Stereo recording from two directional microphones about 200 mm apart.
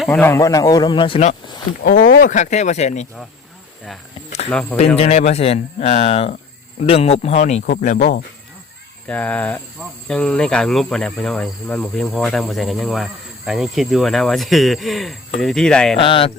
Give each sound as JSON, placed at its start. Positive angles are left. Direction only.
{"t": 0.1, "sound": "speech", "side_deg": 10}
{"t": 1.8, "sound": "speech", "side_deg": 45}
{"t": 4.9, "sound": "speech", "side_deg": 30}
{"t": 9.0, "sound": "speech", "side_deg": 5}
{"t": 10.1, "sound": "cricket", "side_deg": 5}
{"t": 16.0, "sound": "speech", "side_deg": 25}